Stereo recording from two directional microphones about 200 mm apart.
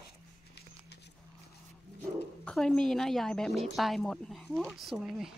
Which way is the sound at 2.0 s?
5° left (ahead or behind).